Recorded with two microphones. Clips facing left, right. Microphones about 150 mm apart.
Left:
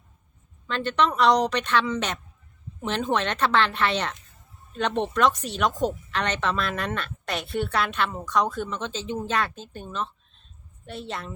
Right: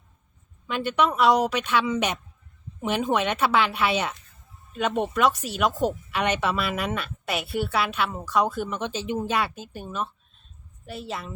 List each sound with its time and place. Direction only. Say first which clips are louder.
0.7 s a woman's voice: even; 10° right (ahead or behind)